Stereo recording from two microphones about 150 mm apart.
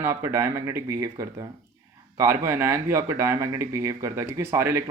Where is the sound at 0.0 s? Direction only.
20° right (ahead or behind).